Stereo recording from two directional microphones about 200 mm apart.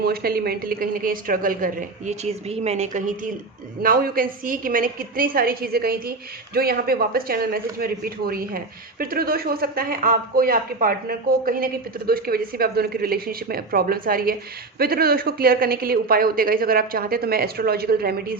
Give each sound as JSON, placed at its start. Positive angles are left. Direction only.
{"t": 0.0, "sound": "a woman's voice", "side_deg": -50}
{"t": 3.8, "sound": "a woman's voice", "side_deg": -45}